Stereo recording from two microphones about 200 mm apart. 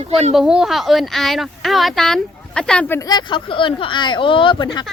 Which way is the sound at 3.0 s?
20° left (ahead or behind).